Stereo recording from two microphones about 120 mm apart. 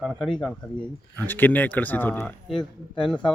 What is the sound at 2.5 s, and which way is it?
Speech, 40° left (ahead or behind).